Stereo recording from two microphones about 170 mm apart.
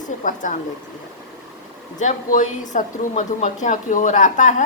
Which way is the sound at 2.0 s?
45° left (ahead or behind).